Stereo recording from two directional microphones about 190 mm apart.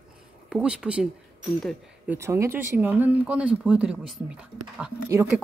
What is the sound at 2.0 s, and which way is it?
Speech, 15° right (ahead or behind).